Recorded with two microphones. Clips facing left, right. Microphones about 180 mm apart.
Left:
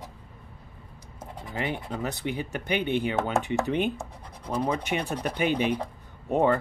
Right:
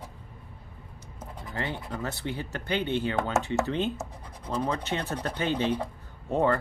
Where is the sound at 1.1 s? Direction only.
15° left (ahead or behind).